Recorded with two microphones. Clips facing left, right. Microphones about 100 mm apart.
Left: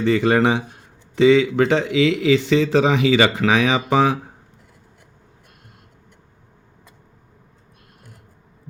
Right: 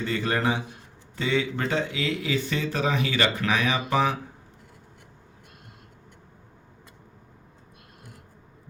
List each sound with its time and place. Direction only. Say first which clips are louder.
0.0 s a man's voice: left 9 dB; 80° left